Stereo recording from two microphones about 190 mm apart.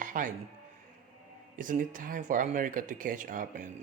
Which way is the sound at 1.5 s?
45° right (ahead or behind).